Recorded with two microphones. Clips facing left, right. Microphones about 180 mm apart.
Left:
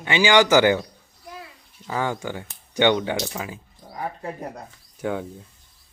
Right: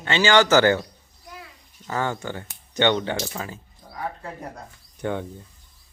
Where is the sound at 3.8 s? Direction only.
30° left (ahead or behind).